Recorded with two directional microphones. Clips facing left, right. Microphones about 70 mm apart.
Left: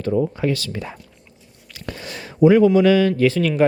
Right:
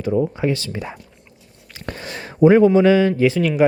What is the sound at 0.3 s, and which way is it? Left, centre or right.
Speech, right.